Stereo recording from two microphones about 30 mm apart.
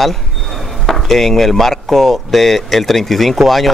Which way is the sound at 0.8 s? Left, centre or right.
Centre.